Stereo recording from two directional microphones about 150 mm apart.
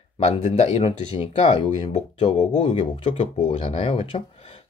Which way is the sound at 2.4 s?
50° left (ahead or behind).